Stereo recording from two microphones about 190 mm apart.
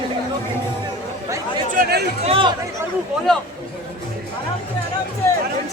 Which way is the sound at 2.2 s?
30° right (ahead or behind).